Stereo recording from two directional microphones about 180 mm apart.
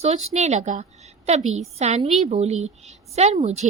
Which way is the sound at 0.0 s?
40° right (ahead or behind).